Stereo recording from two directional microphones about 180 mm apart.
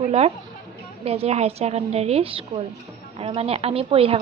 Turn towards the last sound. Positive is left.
turn(degrees=-30)  # may be behind; listen again after turning